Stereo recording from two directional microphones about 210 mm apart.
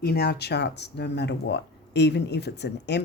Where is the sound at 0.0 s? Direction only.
50° left (ahead or behind).